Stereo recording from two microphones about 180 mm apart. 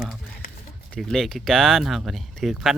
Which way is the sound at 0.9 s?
Centre (ahead or behind).